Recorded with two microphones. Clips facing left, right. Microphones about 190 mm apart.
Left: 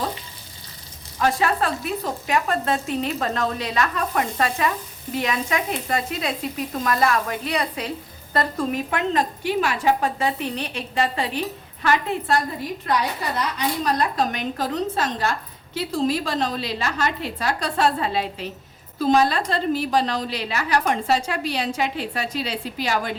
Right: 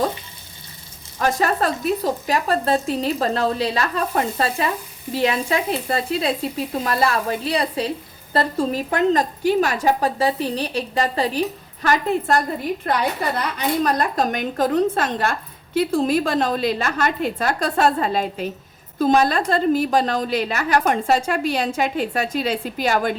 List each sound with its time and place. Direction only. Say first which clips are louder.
1.2 s a woman's voice: right 1 dB; 40° right (ahead or behind)
12.9 s a woman's voice: right 1 dB; 55° right (ahead or behind)